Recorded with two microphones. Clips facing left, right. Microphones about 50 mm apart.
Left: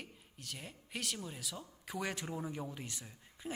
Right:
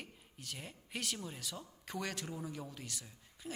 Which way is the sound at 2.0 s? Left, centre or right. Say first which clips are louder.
Left 2 dB; centre.